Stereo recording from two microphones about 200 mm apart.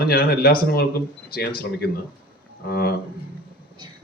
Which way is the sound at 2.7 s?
50° left (ahead or behind).